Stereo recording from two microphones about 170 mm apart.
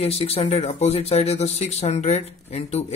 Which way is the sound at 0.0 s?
35° left (ahead or behind).